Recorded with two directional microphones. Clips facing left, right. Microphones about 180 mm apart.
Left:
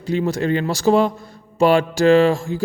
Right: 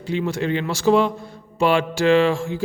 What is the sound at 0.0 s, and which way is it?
Speech, 40° left (ahead or behind).